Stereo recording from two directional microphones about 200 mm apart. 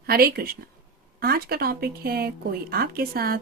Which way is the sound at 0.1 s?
50° right (ahead or behind).